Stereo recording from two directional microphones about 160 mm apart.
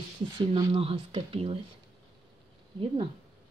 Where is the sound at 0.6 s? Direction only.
30° right (ahead or behind).